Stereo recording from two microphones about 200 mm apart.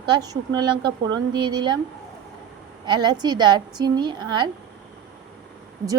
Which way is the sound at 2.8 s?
20° right (ahead or behind).